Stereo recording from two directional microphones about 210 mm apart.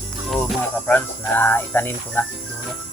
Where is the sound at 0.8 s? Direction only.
10° left (ahead or behind).